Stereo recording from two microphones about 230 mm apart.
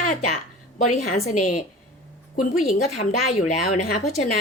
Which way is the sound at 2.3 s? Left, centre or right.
Left.